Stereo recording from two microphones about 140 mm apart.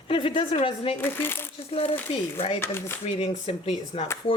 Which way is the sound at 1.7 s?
45° left (ahead or behind).